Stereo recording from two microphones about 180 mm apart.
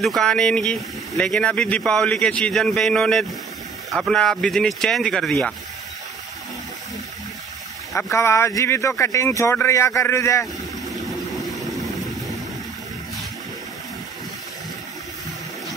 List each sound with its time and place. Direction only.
0.0 s speech: centre (ahead or behind)
7.9 s speech: 15° left (ahead or behind)